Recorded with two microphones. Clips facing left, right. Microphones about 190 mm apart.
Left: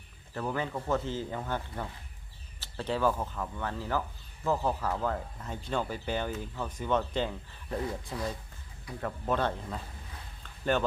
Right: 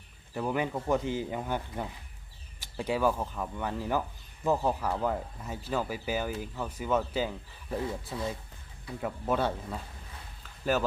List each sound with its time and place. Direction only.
0.3 s speech: 15° right (ahead or behind)
7.9 s speech: 25° right (ahead or behind)
9.0 s speech: 10° right (ahead or behind)
10.4 s a sound: 5° right (ahead or behind)